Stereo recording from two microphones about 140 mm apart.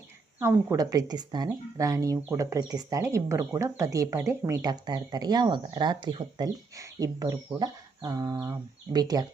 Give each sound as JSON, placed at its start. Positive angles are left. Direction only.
{"t": 0.3, "sound": "speech", "side_deg": -15}